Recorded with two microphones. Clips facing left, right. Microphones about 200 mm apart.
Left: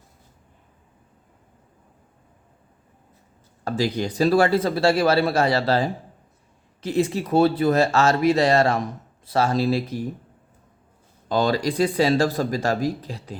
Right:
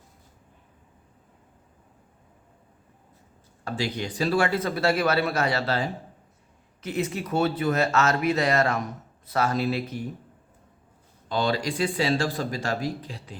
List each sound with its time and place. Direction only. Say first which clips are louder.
3.6 s speech: left 6 dB; 40° left (ahead or behind)
11.3 s speech: left 4 dB; 40° left (ahead or behind)